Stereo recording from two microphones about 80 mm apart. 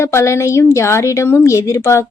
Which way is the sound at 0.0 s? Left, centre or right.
Left.